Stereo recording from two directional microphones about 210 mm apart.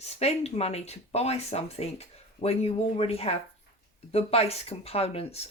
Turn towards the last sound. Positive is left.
turn(degrees=30)  # may be behind; listen again after turning